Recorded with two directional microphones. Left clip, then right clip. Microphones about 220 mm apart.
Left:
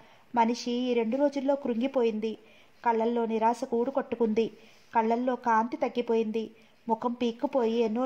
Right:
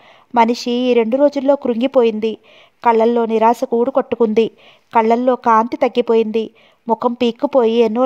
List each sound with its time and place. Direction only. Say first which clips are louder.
0.3 s speech: right 12 dB; 40° right (ahead or behind)